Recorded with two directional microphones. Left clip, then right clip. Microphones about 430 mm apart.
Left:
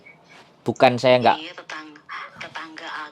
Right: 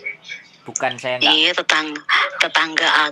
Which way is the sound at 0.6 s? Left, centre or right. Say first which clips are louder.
Left 6 dB; left.